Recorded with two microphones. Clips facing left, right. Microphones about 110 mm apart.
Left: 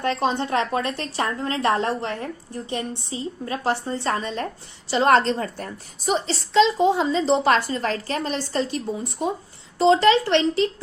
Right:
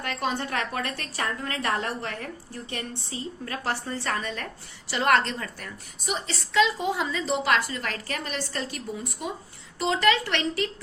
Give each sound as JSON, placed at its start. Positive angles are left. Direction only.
{"t": 0.0, "sound": "a woman's voice", "side_deg": 25}